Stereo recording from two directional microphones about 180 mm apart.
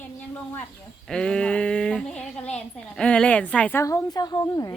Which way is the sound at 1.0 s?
5° left (ahead or behind).